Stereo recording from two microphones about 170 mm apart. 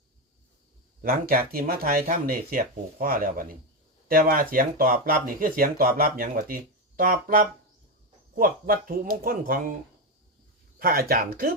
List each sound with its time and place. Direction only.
1.0 s speech: 60° right (ahead or behind)
10.8 s speech: 60° right (ahead or behind)